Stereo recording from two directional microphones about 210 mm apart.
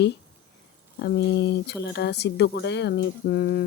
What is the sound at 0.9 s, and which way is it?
Speech, 50° left (ahead or behind).